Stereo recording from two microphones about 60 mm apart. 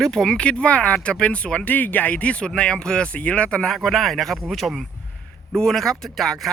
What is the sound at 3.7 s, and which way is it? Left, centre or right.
Speech, centre.